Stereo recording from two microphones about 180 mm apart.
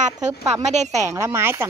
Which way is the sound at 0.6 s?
40° right (ahead or behind).